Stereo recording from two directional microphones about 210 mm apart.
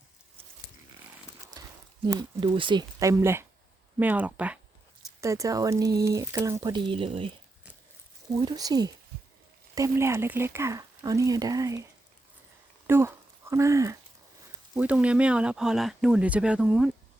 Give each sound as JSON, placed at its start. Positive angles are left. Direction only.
{"t": 1.6, "sound": "a sound", "side_deg": -20}
{"t": 2.0, "sound": "speech", "side_deg": -20}
{"t": 8.4, "sound": "speech", "side_deg": -20}
{"t": 12.9, "sound": "speech", "side_deg": -10}